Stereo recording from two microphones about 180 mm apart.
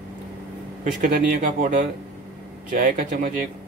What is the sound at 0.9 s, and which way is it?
Speech, 45° right (ahead or behind).